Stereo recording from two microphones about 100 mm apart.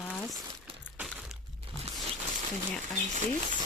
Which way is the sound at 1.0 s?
Centre (ahead or behind).